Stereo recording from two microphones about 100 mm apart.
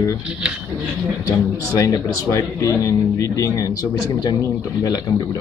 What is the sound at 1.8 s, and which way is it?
Speech, 35° left (ahead or behind).